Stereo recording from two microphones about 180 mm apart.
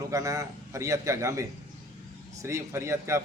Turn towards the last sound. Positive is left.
turn(degrees=-15)  # may be behind; listen again after turning